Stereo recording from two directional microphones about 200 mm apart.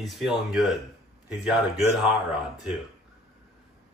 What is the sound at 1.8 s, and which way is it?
Speech, 20° left (ahead or behind).